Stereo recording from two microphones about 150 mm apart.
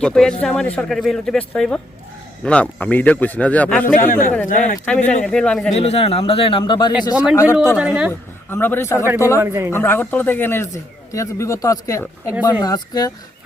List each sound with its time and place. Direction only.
0.0 s speech: 5° left (ahead or behind)
3.9 s a man's voice: 65° left (ahead or behind)
5.2 s speech: 5° left (ahead or behind)
5.7 s speech: 40° left (ahead or behind); by 7.8 s 20° left (ahead or behind)
7.8 s speech: 5° right (ahead or behind)
8.4 s speech: 15° left (ahead or behind)
9.4 s speech: 15° right (ahead or behind)
9.7 s speech: 15° left (ahead or behind)